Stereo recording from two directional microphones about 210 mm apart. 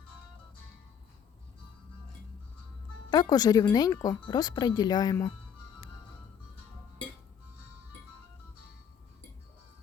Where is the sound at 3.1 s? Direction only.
20° left (ahead or behind).